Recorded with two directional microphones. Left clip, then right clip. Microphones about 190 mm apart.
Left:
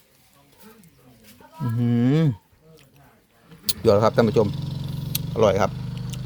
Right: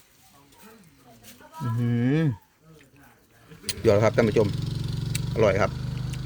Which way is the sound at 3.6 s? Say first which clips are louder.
Left 3 dB; 15° left (ahead or behind).